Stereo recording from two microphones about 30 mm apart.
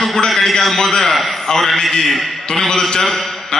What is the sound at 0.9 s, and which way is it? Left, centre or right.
A man's voice, centre.